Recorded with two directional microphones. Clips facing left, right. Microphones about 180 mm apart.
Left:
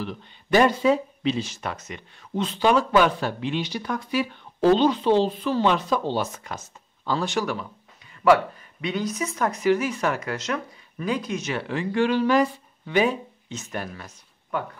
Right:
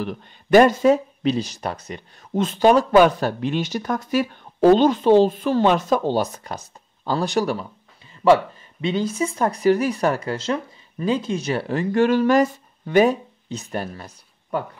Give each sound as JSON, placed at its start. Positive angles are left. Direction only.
{"t": 0.0, "sound": "speech", "side_deg": -50}
{"t": 8.8, "sound": "speech", "side_deg": -30}